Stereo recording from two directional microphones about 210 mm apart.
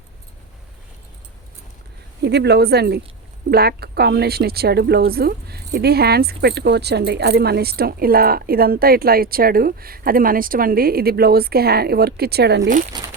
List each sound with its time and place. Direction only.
2.2 s a woman's voice: 50° right (ahead or behind)